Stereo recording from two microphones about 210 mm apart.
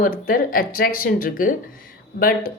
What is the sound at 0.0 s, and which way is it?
Speech, 40° left (ahead or behind).